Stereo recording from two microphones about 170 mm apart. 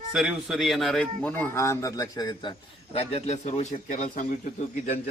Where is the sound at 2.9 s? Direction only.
40° left (ahead or behind).